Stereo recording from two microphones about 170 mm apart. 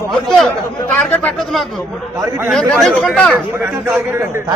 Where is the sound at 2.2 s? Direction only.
15° right (ahead or behind).